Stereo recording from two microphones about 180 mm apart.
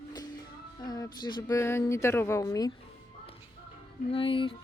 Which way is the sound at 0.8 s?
25° left (ahead or behind).